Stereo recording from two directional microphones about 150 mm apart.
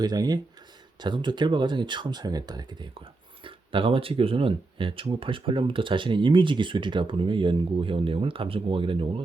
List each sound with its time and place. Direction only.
0.0 s speech: 25° right (ahead or behind)